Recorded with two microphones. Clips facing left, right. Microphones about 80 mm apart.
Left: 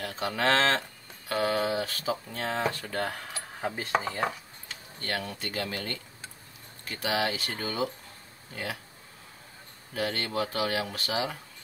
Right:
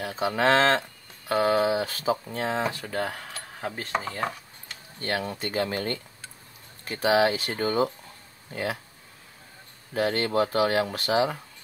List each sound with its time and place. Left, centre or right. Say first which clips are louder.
0.0 s a sound: right 5 dB; centre
0.4 s speech: right 4 dB; centre
5.0 s speech: right 5 dB; centre
5.3 s speech: right 6 dB; right
9.9 s speech: right 6 dB; right